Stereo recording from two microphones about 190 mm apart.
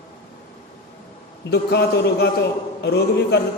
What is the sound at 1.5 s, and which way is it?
A man's voice, 60° left (ahead or behind).